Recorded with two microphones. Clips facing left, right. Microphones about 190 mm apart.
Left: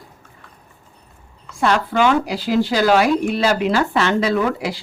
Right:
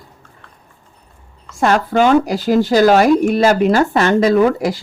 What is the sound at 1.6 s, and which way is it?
Speech, 45° right (ahead or behind).